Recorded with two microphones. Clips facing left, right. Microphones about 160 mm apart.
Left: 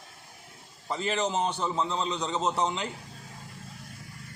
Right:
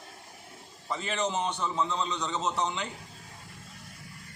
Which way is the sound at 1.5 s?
30° left (ahead or behind).